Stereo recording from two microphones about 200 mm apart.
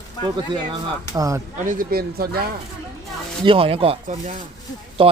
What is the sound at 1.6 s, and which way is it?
Speech, 45° right (ahead or behind).